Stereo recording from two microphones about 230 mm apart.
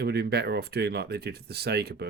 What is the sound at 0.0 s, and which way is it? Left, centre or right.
Speech, right.